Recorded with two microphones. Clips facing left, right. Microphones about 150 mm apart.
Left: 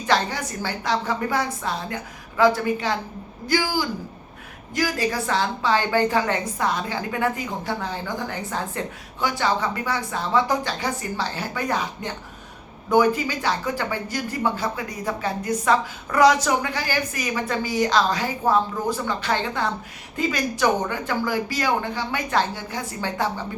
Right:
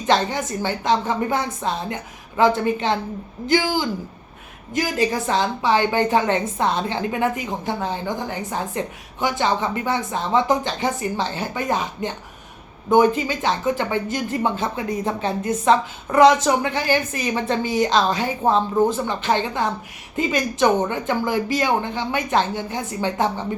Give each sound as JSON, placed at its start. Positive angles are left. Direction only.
{"t": 0.0, "sound": "a woman's voice", "side_deg": -20}